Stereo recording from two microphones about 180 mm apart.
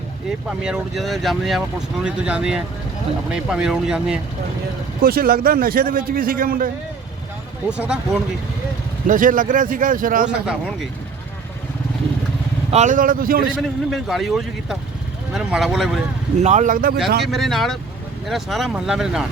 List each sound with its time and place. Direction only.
0.3 s speech: 5° right (ahead or behind)
5.0 s a man's voice: 55° right (ahead or behind)
7.7 s speech: 5° right (ahead or behind)
9.0 s a man's voice: 50° right (ahead or behind)
10.4 s speech: 5° right (ahead or behind)
12.7 s a man's voice: 45° right (ahead or behind)
13.6 s speech: centre (ahead or behind)
16.4 s a man's voice: 40° right (ahead or behind)
17.2 s speech: centre (ahead or behind)